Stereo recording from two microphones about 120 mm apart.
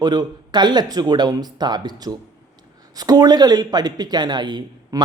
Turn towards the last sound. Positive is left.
turn(degrees=-35)  # may be behind; listen again after turning